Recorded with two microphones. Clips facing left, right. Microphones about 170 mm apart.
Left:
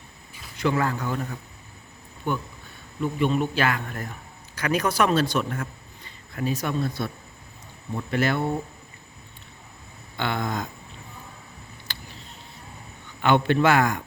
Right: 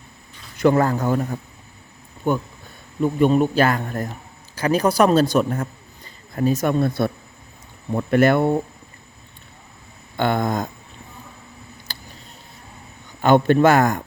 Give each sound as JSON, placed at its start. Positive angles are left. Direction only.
{"t": 0.6, "sound": "a man's voice", "side_deg": -45}
{"t": 10.2, "sound": "a man's voice", "side_deg": -45}
{"t": 11.9, "sound": "a sound", "side_deg": -35}
{"t": 13.2, "sound": "a man's voice", "side_deg": -45}